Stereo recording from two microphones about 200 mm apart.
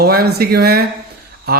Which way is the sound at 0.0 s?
50° right (ahead or behind).